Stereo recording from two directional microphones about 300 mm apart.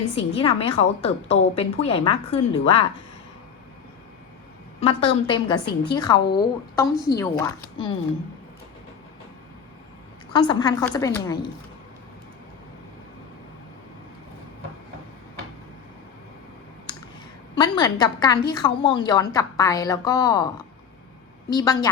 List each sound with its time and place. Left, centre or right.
0.2 s a woman's voice: centre
4.8 s a woman's voice: centre
10.3 s a woman's voice: centre
17.6 s a woman's voice: centre